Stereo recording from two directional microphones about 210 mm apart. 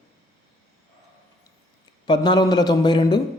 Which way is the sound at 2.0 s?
20° left (ahead or behind).